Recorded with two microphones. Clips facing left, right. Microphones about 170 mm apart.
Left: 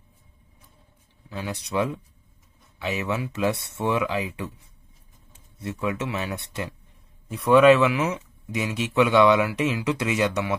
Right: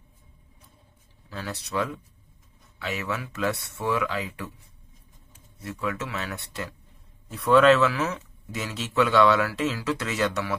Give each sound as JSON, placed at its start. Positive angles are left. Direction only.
{"t": 1.3, "sound": "speech", "side_deg": 15}